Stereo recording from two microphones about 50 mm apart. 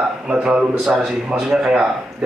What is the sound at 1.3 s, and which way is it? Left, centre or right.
Speech, centre.